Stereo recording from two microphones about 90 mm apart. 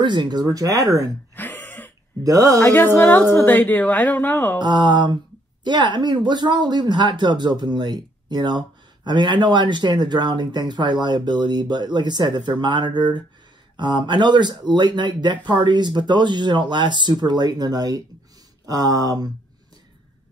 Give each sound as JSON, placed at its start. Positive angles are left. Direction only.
{"t": 0.0, "sound": "speech", "side_deg": -55}
{"t": 1.3, "sound": "throat clearing", "side_deg": 20}
{"t": 2.2, "sound": "speech", "side_deg": -40}
{"t": 2.6, "sound": "a woman's voice", "side_deg": 20}
{"t": 4.6, "sound": "speech", "side_deg": -55}